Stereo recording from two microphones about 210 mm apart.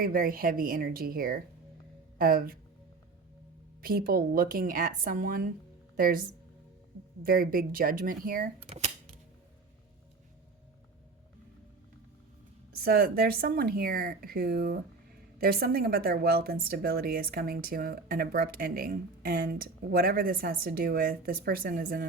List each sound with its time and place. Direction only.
0.0 s a woman's voice: 45° right (ahead or behind)
3.8 s a woman's voice: 45° right (ahead or behind)
7.3 s a woman's voice: 45° right (ahead or behind)
12.7 s a woman's voice: 45° right (ahead or behind)